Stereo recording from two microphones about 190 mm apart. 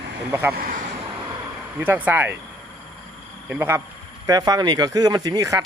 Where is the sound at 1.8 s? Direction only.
10° right (ahead or behind).